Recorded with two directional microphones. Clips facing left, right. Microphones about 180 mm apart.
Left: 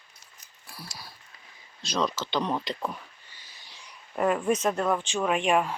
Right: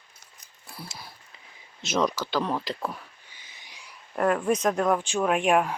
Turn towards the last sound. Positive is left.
turn(degrees=-10)  # may be behind; listen again after turning